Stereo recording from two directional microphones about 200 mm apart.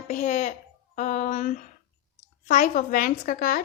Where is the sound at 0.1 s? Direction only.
35° left (ahead or behind).